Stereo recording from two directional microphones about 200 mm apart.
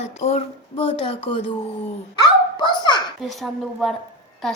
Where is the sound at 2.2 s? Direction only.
20° left (ahead or behind).